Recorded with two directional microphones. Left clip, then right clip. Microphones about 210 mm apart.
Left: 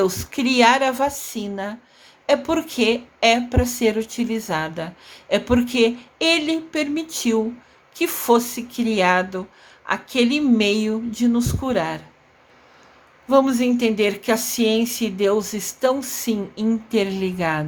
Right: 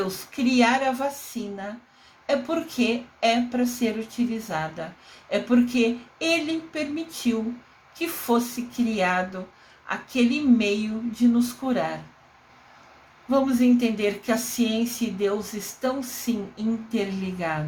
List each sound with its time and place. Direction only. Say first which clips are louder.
0.3 s speech: left 5 dB; 35° left (ahead or behind)
13.3 s speech: left 4 dB; 35° left (ahead or behind)